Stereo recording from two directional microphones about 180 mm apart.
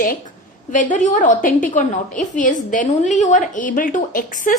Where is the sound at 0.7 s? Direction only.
45° left (ahead or behind).